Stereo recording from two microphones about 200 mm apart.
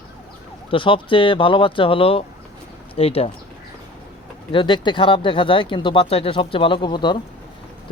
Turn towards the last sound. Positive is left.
turn(degrees=25)  # may be behind; listen again after turning